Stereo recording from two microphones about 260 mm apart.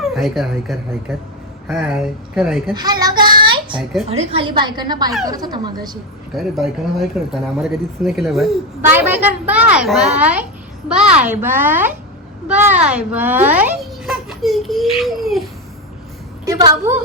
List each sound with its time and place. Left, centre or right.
0.0 s speech: centre
2.7 s a sound: centre
4.1 s a child's voice: right
6.3 s a child's voice: centre
16.5 s a woman's voice: centre